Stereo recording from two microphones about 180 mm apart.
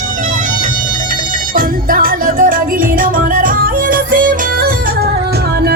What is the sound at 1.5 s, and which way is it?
Music, 50° right (ahead or behind).